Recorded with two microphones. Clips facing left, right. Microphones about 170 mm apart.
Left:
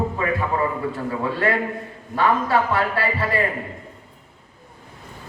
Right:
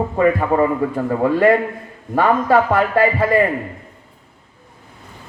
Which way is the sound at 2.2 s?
45° right (ahead or behind).